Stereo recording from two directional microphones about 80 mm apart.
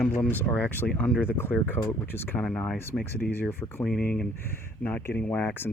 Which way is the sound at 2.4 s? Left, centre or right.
Centre.